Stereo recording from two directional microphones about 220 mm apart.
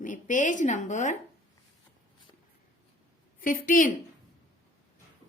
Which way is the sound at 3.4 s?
40° left (ahead or behind).